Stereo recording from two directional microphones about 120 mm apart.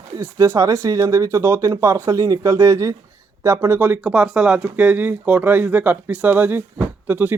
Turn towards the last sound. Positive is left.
turn(degrees=-15)  # may be behind; listen again after turning